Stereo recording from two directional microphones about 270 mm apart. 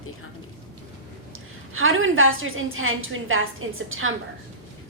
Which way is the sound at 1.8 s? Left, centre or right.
Right.